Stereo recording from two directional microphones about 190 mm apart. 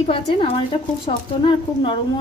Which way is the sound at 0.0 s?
30° left (ahead or behind).